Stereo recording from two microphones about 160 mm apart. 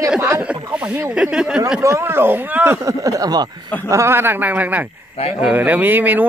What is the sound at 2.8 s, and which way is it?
Speech, 20° right (ahead or behind).